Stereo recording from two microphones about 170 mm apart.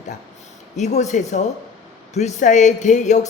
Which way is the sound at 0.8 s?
45° left (ahead or behind).